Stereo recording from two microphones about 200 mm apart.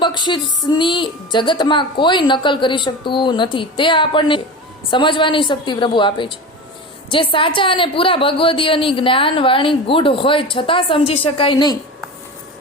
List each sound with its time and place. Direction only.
0.0 s a woman's voice: 25° left (ahead or behind)